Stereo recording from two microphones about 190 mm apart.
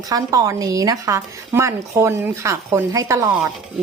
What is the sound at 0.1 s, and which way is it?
Speech, 20° right (ahead or behind).